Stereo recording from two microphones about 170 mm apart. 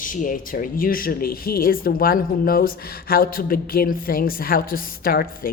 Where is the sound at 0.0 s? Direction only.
50° left (ahead or behind).